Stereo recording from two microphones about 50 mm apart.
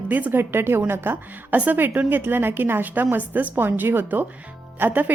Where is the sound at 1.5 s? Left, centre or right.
Right.